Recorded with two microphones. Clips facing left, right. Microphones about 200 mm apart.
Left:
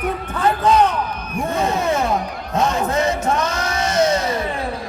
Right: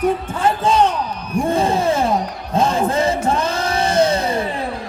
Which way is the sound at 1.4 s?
30° right (ahead or behind).